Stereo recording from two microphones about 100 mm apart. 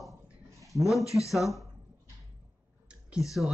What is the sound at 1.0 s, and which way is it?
Speech, 35° left (ahead or behind).